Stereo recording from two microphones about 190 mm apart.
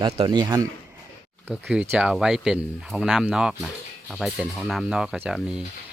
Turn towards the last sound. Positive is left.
turn(degrees=-5)  # may be behind; listen again after turning